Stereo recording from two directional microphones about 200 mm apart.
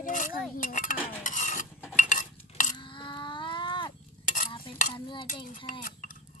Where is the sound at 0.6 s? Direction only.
40° left (ahead or behind).